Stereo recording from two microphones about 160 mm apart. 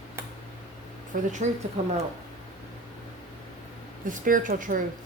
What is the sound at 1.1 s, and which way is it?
Speech, 60° right (ahead or behind).